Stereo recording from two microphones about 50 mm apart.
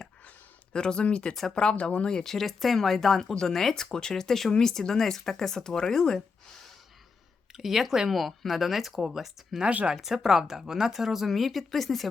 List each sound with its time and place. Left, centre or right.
0.7 s speech: centre
1.3 s speech: centre
1.5 s speech: left
2.2 s speech: centre
7.5 s speech: centre
9.6 s speech: right
9.9 s speech: centre